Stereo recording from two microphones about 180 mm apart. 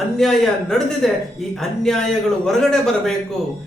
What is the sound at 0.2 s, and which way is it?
Speech, centre (ahead or behind).